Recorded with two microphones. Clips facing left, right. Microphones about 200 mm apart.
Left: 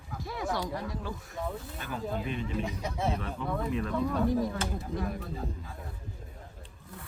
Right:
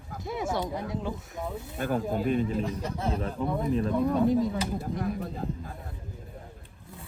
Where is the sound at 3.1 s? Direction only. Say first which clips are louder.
Right 4 dB; 35° right (ahead or behind).